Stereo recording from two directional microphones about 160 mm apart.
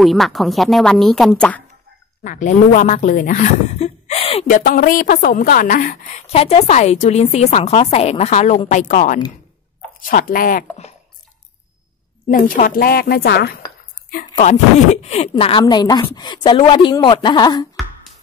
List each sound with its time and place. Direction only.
0.0 s speech: centre (ahead or behind)
2.2 s speech: 50° left (ahead or behind)
4.5 s a woman's voice: 60° left (ahead or behind)
10.0 s speech: 60° left (ahead or behind)
12.3 s a woman's voice: 60° left (ahead or behind); by 13.6 s 85° left
14.1 s a woman's voice: 45° left (ahead or behind)
15.6 s speech: 25° left (ahead or behind)